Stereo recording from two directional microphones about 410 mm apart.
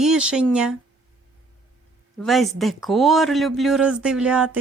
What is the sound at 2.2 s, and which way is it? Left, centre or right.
Speech, centre.